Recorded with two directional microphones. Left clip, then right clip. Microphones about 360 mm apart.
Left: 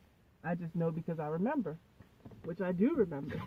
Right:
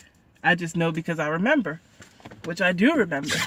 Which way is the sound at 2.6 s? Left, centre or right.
Right.